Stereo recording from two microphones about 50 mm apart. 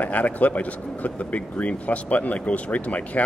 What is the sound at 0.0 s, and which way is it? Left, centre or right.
A man's voice, left.